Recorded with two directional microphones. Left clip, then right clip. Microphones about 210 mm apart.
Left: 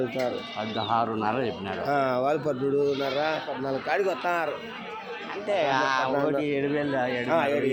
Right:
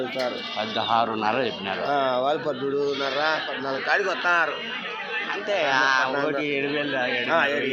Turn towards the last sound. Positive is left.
turn(degrees=65)  # may be behind; listen again after turning